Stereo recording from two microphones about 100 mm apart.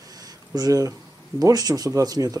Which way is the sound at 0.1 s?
40° right (ahead or behind).